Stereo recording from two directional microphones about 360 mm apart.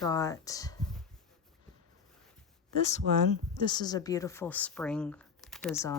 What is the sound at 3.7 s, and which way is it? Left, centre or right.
Speech, centre.